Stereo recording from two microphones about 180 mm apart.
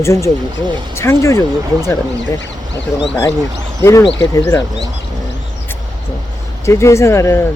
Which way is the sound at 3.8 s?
20° left (ahead or behind).